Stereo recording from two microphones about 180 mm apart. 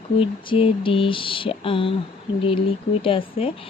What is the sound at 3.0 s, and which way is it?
Speech, 30° left (ahead or behind).